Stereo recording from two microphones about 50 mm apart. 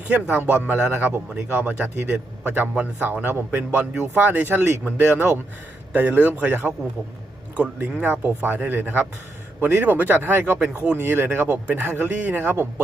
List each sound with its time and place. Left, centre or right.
0.1 s speech: right
0.8 s a man's voice: right
1.5 s speech: right
11.9 s speech: right